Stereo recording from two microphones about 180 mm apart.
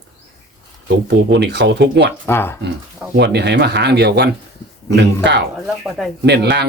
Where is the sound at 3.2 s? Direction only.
70° right (ahead or behind).